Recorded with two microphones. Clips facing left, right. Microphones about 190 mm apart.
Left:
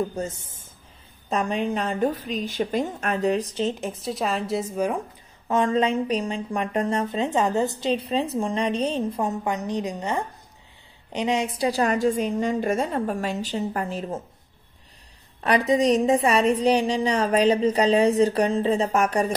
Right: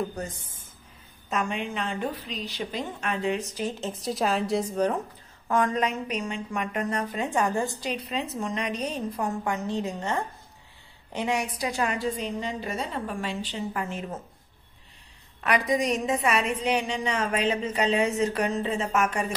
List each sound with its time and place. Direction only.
0.1 s a woman's voice: 25° left (ahead or behind)
4.0 s a woman's voice: centre (ahead or behind)
5.5 s a woman's voice: 25° left (ahead or behind)
15.4 s a woman's voice: 30° left (ahead or behind)